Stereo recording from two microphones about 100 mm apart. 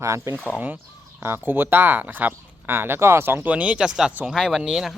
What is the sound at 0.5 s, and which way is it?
Speech, 20° right (ahead or behind).